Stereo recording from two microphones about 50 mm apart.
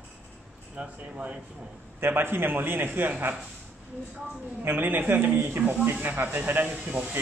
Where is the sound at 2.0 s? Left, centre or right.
Right.